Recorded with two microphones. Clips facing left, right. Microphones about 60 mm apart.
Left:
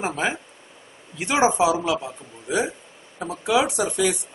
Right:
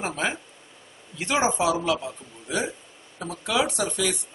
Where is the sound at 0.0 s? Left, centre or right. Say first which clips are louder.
Left 3 dB; centre.